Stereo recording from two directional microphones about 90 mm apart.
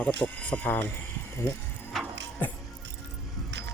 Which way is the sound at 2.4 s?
25° left (ahead or behind).